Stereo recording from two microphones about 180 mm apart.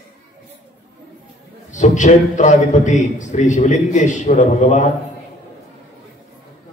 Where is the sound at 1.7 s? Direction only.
45° left (ahead or behind).